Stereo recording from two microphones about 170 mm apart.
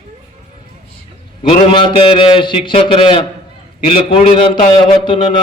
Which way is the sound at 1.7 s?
30° left (ahead or behind).